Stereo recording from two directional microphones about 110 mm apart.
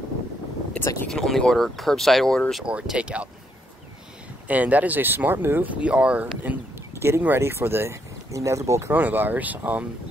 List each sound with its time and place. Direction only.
0.7 s boat: 25° left (ahead or behind)
1.0 s speech: 5° left (ahead or behind)
2.6 s speech: 10° right (ahead or behind)
4.5 s speech: 15° right (ahead or behind)
8.9 s speech: 15° right (ahead or behind)